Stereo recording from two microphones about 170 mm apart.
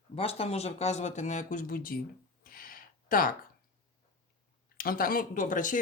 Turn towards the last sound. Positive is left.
turn(degrees=50)  # may be behind; listen again after turning